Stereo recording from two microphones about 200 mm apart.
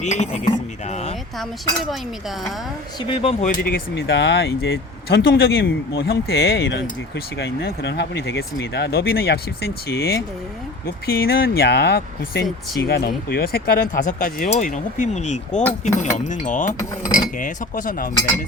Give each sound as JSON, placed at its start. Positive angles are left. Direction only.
{"t": 0.0, "sound": "speech", "side_deg": 35}
{"t": 1.4, "sound": "speech", "side_deg": 0}
{"t": 3.1, "sound": "speech", "side_deg": 30}
{"t": 3.6, "sound": "speech", "side_deg": 50}